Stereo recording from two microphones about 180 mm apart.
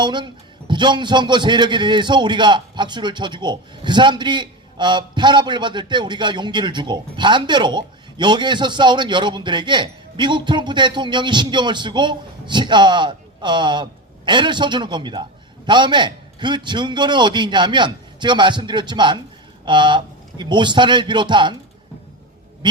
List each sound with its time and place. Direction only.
0.0 s a man's voice: 25° right (ahead or behind)
22.6 s a man's voice: 25° right (ahead or behind)